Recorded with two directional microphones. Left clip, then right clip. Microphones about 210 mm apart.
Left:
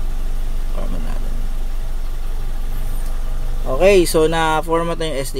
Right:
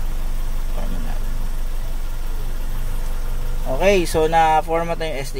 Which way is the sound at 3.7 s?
30° left (ahead or behind).